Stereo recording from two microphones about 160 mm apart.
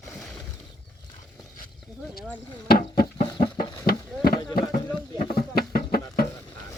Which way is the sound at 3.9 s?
65° left (ahead or behind).